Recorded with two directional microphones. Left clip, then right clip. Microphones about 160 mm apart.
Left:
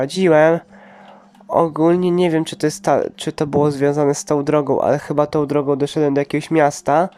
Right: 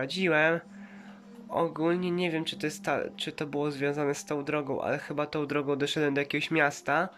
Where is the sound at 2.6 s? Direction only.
40° left (ahead or behind).